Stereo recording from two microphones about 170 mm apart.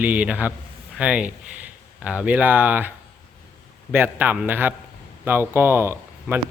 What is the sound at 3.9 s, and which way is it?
Speech, 10° right (ahead or behind).